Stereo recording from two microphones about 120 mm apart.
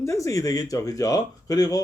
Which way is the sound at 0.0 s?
25° left (ahead or behind).